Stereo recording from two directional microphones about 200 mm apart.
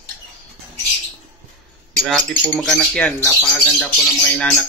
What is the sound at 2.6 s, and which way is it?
Speech, 5° left (ahead or behind).